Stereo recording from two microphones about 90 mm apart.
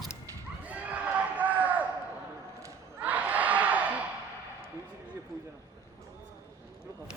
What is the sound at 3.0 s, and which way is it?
Crowd, 20° right (ahead or behind).